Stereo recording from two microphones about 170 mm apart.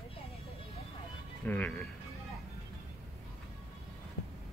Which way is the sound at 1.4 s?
10° left (ahead or behind).